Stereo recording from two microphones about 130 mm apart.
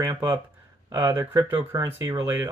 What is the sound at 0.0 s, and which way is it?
Speech, 25° right (ahead or behind).